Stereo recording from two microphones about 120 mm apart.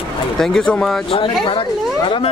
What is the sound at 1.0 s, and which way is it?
Speech, 50° left (ahead or behind).